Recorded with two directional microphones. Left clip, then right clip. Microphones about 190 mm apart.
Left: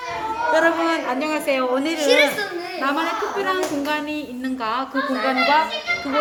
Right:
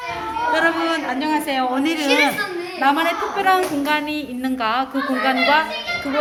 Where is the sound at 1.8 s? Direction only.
5° right (ahead or behind).